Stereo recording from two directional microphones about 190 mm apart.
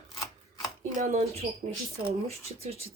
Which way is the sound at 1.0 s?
40° right (ahead or behind).